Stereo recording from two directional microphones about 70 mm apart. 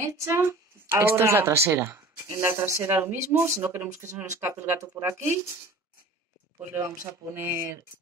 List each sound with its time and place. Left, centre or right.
0.0 s speech: right
6.6 s speech: right